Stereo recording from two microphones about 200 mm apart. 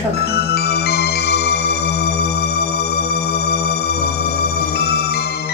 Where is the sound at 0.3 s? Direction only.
50° left (ahead or behind).